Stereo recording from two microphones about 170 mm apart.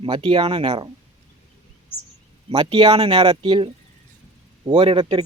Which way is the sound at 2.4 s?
30° right (ahead or behind).